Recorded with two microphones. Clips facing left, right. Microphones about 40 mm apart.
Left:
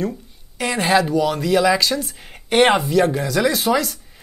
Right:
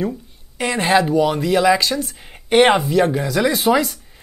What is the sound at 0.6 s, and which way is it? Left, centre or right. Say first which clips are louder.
Speech: right 1 dB; centre.